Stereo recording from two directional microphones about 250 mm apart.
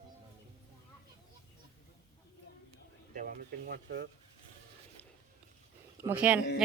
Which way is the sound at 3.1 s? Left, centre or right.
Right.